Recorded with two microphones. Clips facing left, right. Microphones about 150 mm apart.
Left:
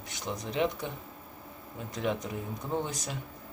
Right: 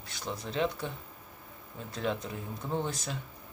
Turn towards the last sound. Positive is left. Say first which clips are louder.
# even
turn(degrees=15)  # may be behind; listen again after turning